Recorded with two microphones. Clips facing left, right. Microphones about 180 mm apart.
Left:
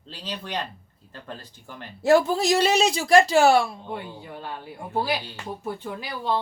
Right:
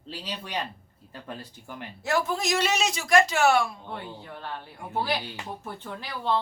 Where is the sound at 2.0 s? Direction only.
30° left (ahead or behind).